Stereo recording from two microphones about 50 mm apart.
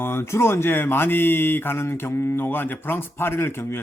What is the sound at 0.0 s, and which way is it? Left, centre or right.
Speech, left.